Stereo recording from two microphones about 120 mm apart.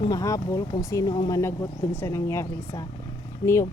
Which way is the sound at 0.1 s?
30° left (ahead or behind).